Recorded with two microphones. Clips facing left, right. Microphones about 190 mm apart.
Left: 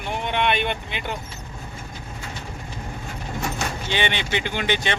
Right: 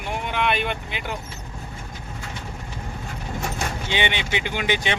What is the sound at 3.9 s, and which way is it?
Speech, 15° right (ahead or behind).